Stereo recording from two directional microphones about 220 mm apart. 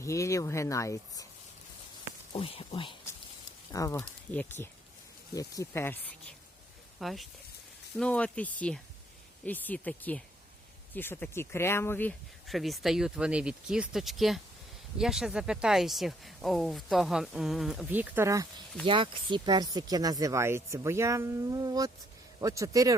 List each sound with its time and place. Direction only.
0.0 s speech: 15° left (ahead or behind)
2.3 s speech: 25° left (ahead or behind); by 18.4 s 10° right (ahead or behind)
18.9 s speech: 25° right (ahead or behind)